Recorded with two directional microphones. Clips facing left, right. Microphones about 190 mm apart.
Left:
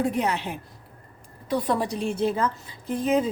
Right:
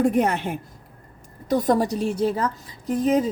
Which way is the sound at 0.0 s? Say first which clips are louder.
Right 5 dB; 50° right (ahead or behind).